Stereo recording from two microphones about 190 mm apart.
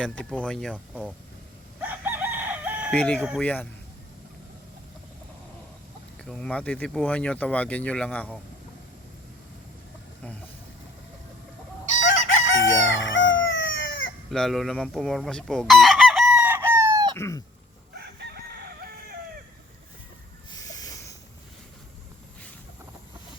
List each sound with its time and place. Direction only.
0.0 s speech: 5° left (ahead or behind)
1.8 s chicken: 10° right (ahead or behind)
2.9 s speech: 5° left (ahead or behind)
6.1 s speech: 5° left (ahead or behind)
12.3 s crowing: 85° left
14.3 s chicken: centre (ahead or behind); by 17.2 s 20° right (ahead or behind)
17.2 s speech: 15° left (ahead or behind)
17.9 s chicken: 60° right (ahead or behind)
20.5 s a sound: 20° left (ahead or behind)